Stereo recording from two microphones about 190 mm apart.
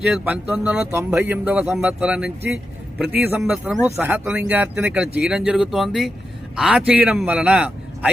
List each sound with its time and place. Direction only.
0.1 s speech: 5° right (ahead or behind)